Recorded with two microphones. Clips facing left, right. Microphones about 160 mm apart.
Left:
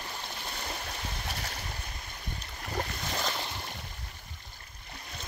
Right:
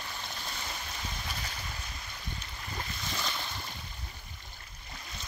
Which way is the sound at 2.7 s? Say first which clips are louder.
Left 5 dB; 55° left (ahead or behind).